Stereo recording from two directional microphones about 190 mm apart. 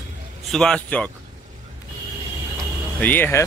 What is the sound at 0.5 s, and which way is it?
Speech, 5° left (ahead or behind).